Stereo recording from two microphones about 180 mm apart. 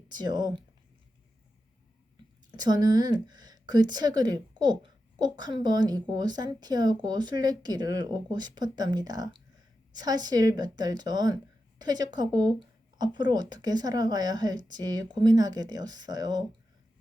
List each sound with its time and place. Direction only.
0.1 s a woman's voice: 25° right (ahead or behind)
2.6 s a woman's voice: 25° right (ahead or behind)